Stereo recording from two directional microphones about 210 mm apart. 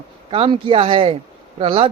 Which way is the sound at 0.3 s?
25° right (ahead or behind).